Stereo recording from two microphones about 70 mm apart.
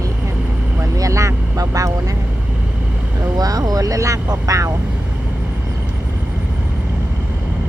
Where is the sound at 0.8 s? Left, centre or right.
Right.